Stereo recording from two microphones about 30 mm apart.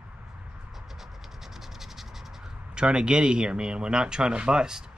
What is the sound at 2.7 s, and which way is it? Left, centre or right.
Speech, right.